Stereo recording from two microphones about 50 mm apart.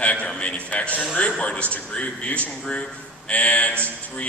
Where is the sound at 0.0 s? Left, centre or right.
Left.